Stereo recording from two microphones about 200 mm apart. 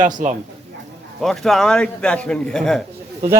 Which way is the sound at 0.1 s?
40° right (ahead or behind).